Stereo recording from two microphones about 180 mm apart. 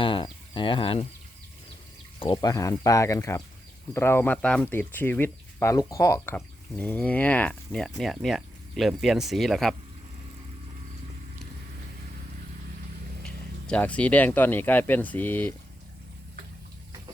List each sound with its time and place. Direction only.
0.0 s speech: 25° left (ahead or behind)
2.1 s speech: 25° left (ahead or behind); by 9.7 s centre (ahead or behind)
13.2 s speech: 5° left (ahead or behind)